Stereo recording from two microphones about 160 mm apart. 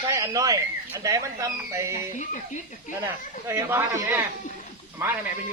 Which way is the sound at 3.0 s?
15° right (ahead or behind).